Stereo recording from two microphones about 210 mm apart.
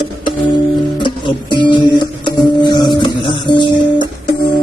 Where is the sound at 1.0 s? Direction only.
20° left (ahead or behind).